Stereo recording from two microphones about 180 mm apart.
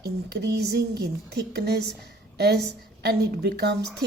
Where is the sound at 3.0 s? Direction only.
65° right (ahead or behind).